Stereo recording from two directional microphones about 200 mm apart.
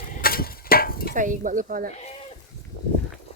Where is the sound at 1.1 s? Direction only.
40° right (ahead or behind).